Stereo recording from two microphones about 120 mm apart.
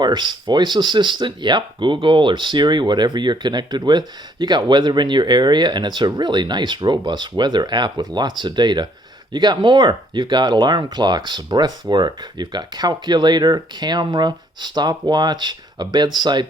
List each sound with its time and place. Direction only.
0.0 s speech: 40° right (ahead or behind)